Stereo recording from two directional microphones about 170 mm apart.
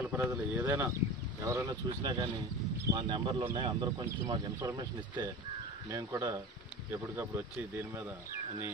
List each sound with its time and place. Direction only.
0.0 s speech: 15° right (ahead or behind)